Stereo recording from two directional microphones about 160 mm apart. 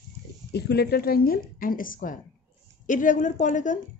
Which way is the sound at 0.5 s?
85° left.